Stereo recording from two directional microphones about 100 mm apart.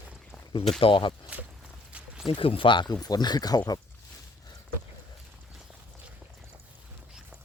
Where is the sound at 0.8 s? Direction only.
55° left (ahead or behind).